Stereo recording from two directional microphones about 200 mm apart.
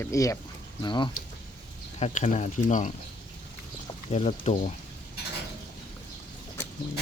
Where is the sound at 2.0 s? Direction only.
35° left (ahead or behind).